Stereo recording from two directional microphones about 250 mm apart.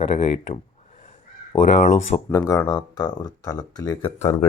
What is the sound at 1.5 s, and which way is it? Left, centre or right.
Speech, left.